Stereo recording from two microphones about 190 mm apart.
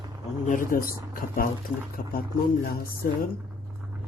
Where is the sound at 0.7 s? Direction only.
45° left (ahead or behind).